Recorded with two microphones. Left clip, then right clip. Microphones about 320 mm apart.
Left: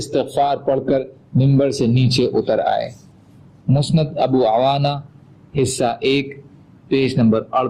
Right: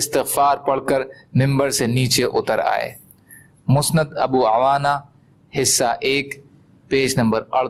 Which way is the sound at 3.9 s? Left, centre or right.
Right.